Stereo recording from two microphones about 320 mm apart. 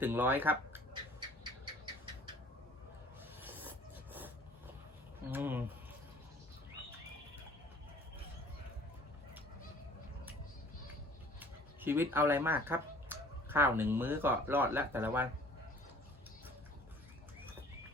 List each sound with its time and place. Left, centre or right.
0.0 s speech: centre
3.4 s filing: centre
5.3 s speech: centre
11.3 s speech: centre